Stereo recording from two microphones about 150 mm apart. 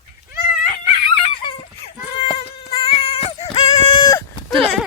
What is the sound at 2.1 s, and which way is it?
Cat, 35° left (ahead or behind).